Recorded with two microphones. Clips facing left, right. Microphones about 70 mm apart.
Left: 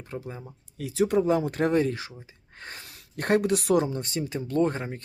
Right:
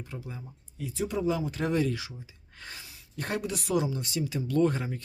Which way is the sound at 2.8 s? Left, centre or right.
Left.